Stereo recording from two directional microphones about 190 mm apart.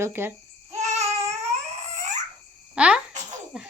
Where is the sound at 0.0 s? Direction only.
10° right (ahead or behind).